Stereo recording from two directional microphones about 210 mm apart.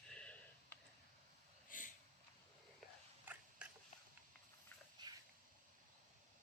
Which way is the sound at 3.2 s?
5° right (ahead or behind).